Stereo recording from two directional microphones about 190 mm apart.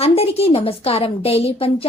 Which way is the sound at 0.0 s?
30° left (ahead or behind).